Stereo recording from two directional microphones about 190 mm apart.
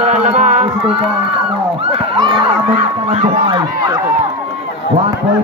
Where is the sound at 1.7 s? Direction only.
25° right (ahead or behind).